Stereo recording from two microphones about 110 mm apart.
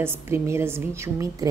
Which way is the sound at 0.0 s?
20° right (ahead or behind).